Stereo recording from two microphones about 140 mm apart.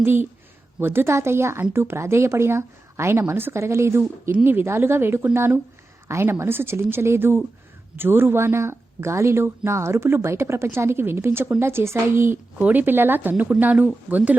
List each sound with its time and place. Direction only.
0.0 s a woman's voice: 15° right (ahead or behind)